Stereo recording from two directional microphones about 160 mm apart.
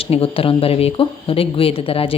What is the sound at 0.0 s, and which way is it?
Speech, 35° left (ahead or behind).